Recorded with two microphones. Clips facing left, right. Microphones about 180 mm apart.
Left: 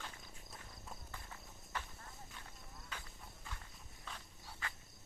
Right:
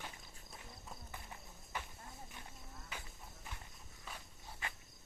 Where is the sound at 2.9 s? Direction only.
10° right (ahead or behind).